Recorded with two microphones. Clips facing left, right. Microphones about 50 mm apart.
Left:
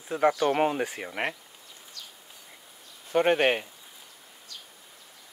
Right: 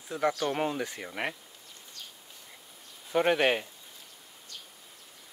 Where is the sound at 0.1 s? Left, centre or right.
Left.